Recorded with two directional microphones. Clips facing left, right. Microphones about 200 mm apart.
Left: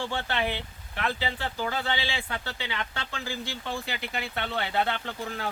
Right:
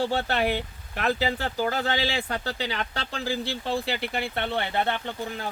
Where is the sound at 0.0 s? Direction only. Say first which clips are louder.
Right 5 dB; 40° right (ahead or behind).